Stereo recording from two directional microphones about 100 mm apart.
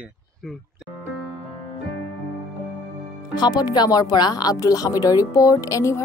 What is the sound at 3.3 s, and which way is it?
Speech, 40° left (ahead or behind).